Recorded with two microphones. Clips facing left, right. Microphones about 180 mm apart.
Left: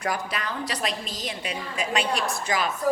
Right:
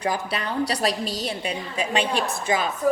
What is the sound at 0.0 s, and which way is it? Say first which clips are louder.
A woman's voice: right 3 dB; 30° right (ahead or behind).